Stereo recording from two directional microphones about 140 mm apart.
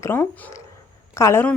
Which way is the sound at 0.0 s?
20° left (ahead or behind).